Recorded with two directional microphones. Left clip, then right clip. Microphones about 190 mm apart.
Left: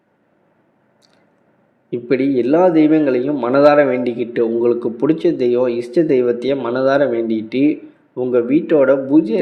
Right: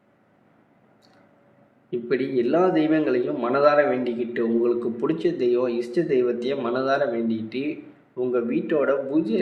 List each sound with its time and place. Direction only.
1.9 s a man's voice: 35° left (ahead or behind)